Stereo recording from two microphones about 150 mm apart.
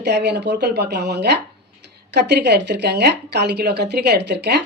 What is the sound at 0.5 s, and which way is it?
A woman's voice, 90° right.